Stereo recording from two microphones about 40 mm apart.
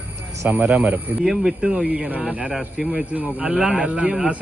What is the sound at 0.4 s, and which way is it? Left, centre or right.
Speech, right.